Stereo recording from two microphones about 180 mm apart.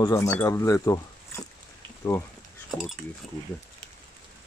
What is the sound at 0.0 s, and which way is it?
Speech, 15° left (ahead or behind).